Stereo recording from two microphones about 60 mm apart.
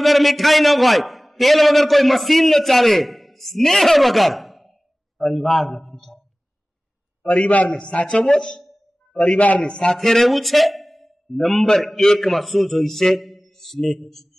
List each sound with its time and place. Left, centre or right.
0.0 s a man's voice: centre
7.5 s speech: left
9.4 s a man's voice: left
9.7 s a man's voice: centre